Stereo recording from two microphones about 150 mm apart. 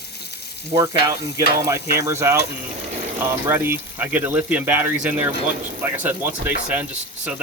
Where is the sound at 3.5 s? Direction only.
15° right (ahead or behind).